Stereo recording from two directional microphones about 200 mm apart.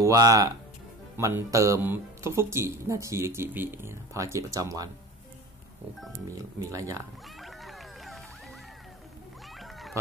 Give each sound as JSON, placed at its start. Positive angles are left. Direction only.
{"t": 0.0, "sound": "speech", "side_deg": -15}
{"t": 6.3, "sound": "speech", "side_deg": -15}
{"t": 7.3, "sound": "music", "side_deg": 0}
{"t": 9.6, "sound": "a sound", "side_deg": 0}